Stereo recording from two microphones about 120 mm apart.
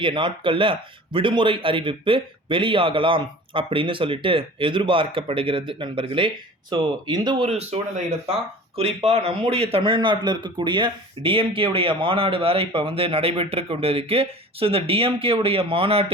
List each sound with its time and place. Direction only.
0.0 s speech: 45° right (ahead or behind)
7.5 s speech: 65° right (ahead or behind)